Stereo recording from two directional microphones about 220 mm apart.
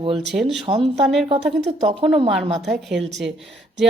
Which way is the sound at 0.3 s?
Centre (ahead or behind).